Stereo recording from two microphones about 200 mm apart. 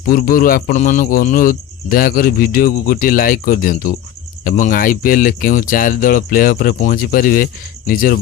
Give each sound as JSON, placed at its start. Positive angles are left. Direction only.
{"t": 0.0, "sound": "a man's voice", "side_deg": 45}